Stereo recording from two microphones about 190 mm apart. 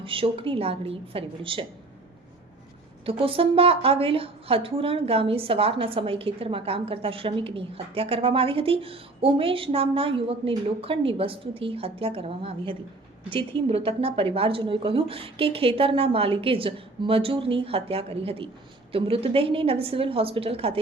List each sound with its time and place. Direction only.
0.0 s a woman's voice: 30° right (ahead or behind)
3.1 s a woman's voice: 30° right (ahead or behind)